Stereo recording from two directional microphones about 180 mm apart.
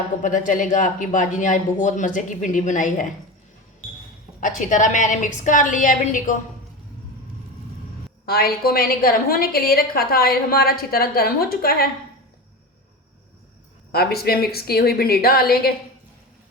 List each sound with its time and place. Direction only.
0.2 s speech: 45° left (ahead or behind)
4.4 s speech: 45° left (ahead or behind)
8.3 s a woman's voice: 60° left (ahead or behind)
13.9 s a woman's voice: 60° left (ahead or behind)